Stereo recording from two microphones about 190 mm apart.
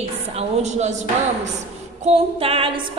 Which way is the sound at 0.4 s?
35° right (ahead or behind).